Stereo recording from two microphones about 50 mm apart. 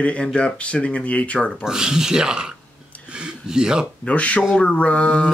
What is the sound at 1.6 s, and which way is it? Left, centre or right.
Speech, centre.